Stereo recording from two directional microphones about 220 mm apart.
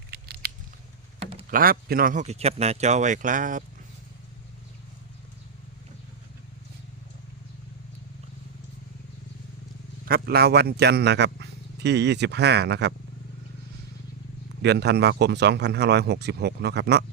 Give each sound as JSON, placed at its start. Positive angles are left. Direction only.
{"t": 0.1, "sound": "biting", "side_deg": -45}
{"t": 1.2, "sound": "a sound", "side_deg": -25}
{"t": 1.5, "sound": "a man's voice", "side_deg": -40}
{"t": 10.1, "sound": "speech", "side_deg": -45}
{"t": 14.6, "sound": "speech", "side_deg": -50}